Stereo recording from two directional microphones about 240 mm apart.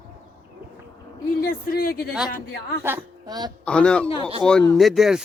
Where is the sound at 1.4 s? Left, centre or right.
Left.